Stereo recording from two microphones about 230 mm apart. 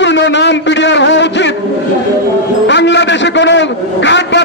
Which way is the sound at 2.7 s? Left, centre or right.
Left.